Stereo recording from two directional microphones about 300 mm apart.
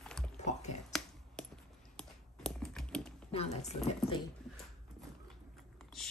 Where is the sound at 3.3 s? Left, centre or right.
Left.